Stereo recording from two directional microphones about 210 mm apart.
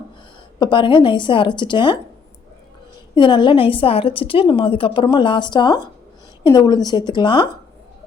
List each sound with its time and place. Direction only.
0.6 s a woman's voice: 20° left (ahead or behind)
3.2 s a woman's voice: 20° left (ahead or behind)